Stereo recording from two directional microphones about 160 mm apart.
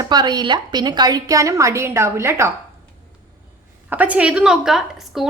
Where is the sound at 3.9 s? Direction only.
10° right (ahead or behind).